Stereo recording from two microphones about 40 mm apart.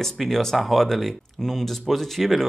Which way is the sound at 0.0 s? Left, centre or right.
Centre.